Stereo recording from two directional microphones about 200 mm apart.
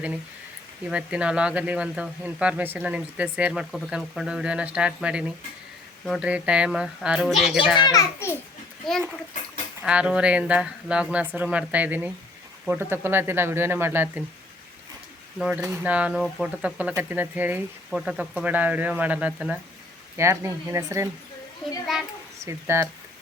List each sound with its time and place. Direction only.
0.9 s speech: 5° right (ahead or behind)
7.8 s a child's voice: 20° left (ahead or behind)
8.8 s speech: centre (ahead or behind)
15.4 s speech: 5° right (ahead or behind)
21.9 s speech: centre (ahead or behind)
22.4 s speech: 15° right (ahead or behind)